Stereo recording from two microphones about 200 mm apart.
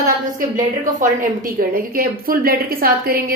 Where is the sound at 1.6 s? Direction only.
45° right (ahead or behind).